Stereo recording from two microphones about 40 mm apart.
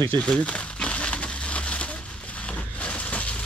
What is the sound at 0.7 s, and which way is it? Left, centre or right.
Crushing, left.